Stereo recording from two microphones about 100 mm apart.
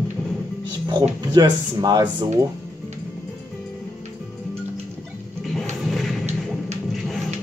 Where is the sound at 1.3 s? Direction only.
45° right (ahead or behind).